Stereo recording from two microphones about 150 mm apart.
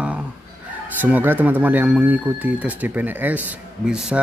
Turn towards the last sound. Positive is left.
turn(degrees=-5)  # may be behind; listen again after turning